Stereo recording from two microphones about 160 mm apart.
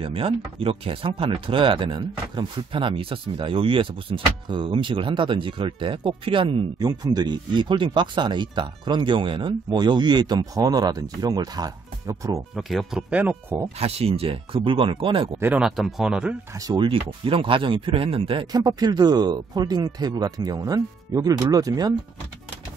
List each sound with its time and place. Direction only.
0.0 s speech: 35° right (ahead or behind); by 12.4 s 20° right (ahead or behind)
12.5 s speech: centre (ahead or behind)
13.7 s speech: 40° right (ahead or behind)
15.3 s speech: 10° right (ahead or behind)
16.5 s speech: 25° right (ahead or behind)